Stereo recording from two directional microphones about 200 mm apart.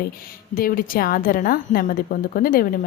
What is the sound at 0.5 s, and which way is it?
A woman's voice, 45° left (ahead or behind).